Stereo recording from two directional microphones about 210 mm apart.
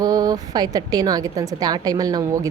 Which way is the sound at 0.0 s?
15° right (ahead or behind).